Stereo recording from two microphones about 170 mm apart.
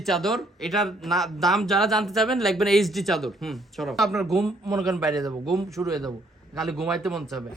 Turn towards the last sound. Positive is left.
turn(degrees=0)  # may be behind; listen again after turning